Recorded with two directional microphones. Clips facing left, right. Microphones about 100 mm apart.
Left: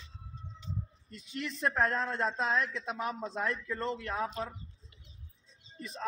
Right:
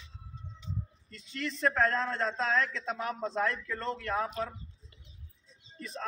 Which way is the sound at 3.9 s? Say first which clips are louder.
Right 3 dB; 65° right (ahead or behind).